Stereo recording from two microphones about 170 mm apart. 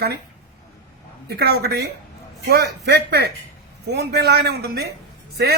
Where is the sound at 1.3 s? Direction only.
75° right (ahead or behind).